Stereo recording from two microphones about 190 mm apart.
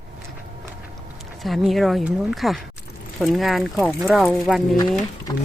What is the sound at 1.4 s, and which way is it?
Speech, centre (ahead or behind).